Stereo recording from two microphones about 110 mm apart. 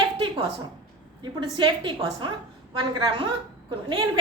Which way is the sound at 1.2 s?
45° right (ahead or behind).